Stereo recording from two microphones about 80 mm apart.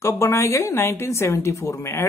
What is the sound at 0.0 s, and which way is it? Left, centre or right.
Speech, left.